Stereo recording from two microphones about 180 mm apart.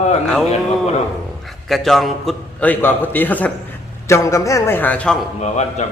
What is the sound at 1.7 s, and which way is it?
A man's voice, centre (ahead or behind).